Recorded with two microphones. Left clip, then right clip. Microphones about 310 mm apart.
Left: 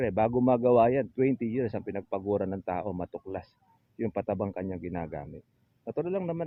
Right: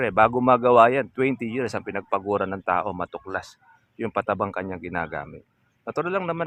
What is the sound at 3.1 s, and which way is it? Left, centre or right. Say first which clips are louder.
Speech: right 7 dB; right.